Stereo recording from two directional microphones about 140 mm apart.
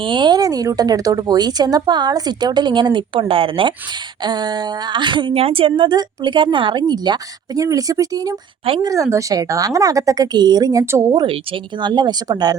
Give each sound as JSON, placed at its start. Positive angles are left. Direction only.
{"t": 0.0, "sound": "a woman's voice", "side_deg": -35}